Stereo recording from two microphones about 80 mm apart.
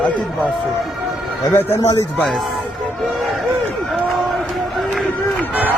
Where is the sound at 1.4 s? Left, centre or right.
Left.